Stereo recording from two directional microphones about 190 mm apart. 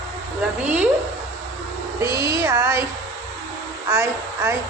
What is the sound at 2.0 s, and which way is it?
Speech, 15° right (ahead or behind).